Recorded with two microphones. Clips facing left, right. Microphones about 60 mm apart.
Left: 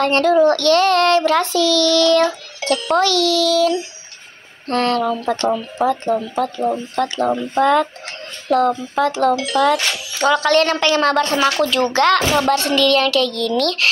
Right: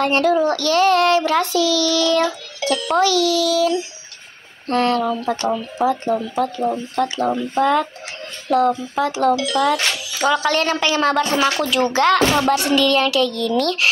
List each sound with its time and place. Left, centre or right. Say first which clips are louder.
0.0 s a woman's voice: left 3 dB; centre
9.3 s speech: even; left
9.7 s a woman's voice: left 2 dB; centre
12.5 s a woman's voice: left 1 dB; centre